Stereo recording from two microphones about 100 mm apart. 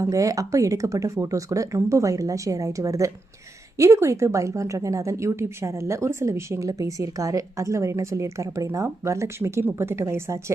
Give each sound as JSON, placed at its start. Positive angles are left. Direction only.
{"t": 0.0, "sound": "a woman's voice", "side_deg": -35}